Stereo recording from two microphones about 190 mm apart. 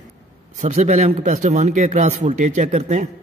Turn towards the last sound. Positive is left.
turn(degrees=-40)  # may be behind; listen again after turning